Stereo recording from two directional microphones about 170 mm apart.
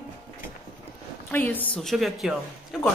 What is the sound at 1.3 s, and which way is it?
A man's voice, 10° left (ahead or behind).